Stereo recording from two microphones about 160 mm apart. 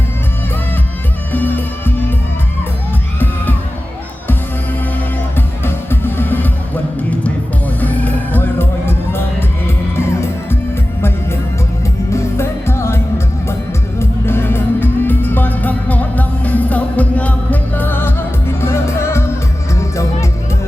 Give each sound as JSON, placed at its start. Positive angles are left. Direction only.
{"t": 1.3, "sound": "music", "side_deg": 10}
{"t": 5.6, "sound": "music", "side_deg": 15}
{"t": 7.8, "sound": "music", "side_deg": 10}
{"t": 12.1, "sound": "music", "side_deg": 15}
{"t": 14.0, "sound": "music", "side_deg": 15}